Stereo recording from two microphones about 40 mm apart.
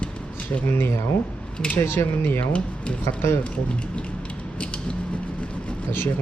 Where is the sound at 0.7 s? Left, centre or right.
Left.